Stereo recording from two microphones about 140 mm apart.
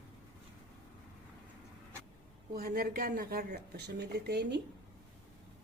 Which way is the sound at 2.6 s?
90° right.